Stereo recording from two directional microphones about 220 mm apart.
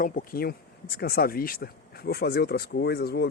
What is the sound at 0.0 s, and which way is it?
Speech, 40° left (ahead or behind).